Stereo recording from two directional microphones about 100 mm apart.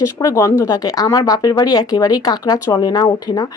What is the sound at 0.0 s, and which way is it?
Speech, 35° left (ahead or behind).